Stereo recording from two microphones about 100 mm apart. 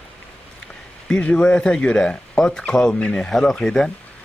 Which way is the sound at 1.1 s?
10° left (ahead or behind).